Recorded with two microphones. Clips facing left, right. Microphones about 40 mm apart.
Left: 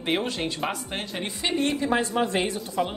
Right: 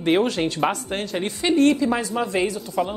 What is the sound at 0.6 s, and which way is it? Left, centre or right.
Speech, right.